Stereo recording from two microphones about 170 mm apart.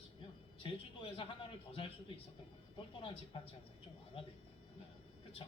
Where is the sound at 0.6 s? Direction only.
30° left (ahead or behind).